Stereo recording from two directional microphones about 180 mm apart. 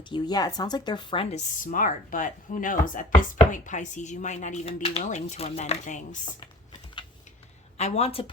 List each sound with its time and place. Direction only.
0.1 s speech: 20° left (ahead or behind)
1.6 s speech: 50° left (ahead or behind)
3.2 s chopping: 45° left (ahead or behind)
7.8 s chopping: 35° left (ahead or behind)